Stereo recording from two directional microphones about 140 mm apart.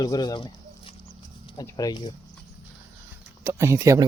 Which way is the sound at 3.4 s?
20° right (ahead or behind).